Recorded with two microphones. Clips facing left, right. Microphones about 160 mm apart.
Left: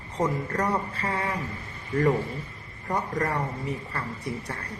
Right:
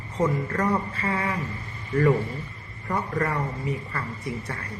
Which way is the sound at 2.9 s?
35° left (ahead or behind).